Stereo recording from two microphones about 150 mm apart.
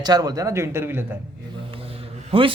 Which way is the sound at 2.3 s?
35° right (ahead or behind).